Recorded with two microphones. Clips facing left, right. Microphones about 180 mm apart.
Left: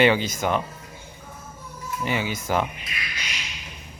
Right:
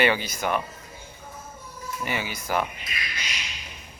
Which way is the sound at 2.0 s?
20° left (ahead or behind).